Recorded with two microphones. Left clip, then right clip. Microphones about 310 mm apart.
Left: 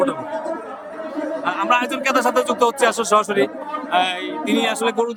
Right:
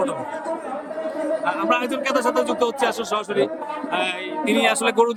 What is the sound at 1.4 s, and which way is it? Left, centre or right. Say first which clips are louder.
A man's voice: left 4 dB; centre.